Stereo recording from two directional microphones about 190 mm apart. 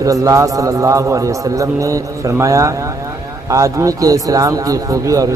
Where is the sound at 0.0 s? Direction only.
15° right (ahead or behind).